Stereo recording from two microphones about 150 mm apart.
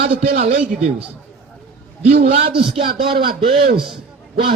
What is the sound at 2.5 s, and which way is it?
A man's voice, 35° right (ahead or behind).